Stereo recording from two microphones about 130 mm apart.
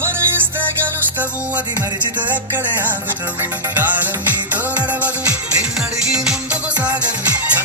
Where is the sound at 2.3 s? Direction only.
15° right (ahead or behind).